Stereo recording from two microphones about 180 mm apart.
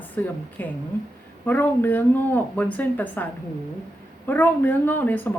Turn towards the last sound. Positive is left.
turn(degrees=10)  # may be behind; listen again after turning